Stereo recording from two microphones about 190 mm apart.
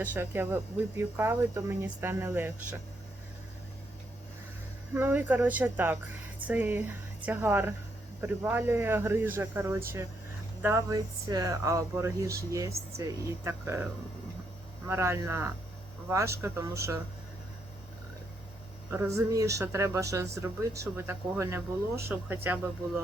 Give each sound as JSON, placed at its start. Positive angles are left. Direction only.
{"t": 0.0, "sound": "speech", "side_deg": -10}
{"t": 4.9, "sound": "speech", "side_deg": -10}
{"t": 14.8, "sound": "speech", "side_deg": -15}
{"t": 18.9, "sound": "speech", "side_deg": -15}